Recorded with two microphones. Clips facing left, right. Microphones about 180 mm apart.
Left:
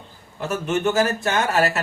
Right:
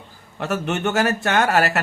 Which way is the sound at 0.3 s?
70° right (ahead or behind).